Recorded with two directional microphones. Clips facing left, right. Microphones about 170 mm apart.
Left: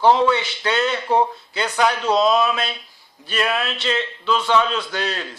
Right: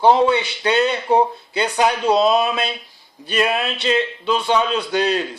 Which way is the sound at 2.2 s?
30° right (ahead or behind).